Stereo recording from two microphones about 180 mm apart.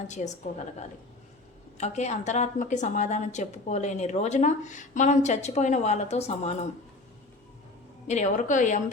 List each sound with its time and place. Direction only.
0.2 s a woman's voice: 45° left (ahead or behind)
1.8 s a woman's voice: 40° left (ahead or behind)
8.0 s a woman's voice: 40° left (ahead or behind)